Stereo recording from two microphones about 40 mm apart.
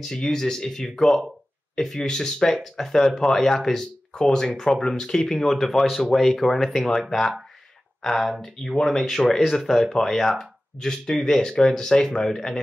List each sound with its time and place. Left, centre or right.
0.0 s speech: centre
10.8 s speech: centre